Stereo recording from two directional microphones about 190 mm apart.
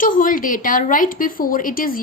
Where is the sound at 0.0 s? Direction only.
45° left (ahead or behind).